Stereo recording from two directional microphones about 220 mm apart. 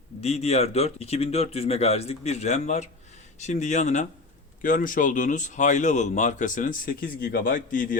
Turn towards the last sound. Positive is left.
turn(degrees=40)  # may be behind; listen again after turning